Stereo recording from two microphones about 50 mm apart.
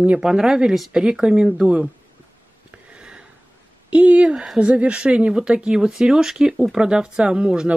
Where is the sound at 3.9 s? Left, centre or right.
Right.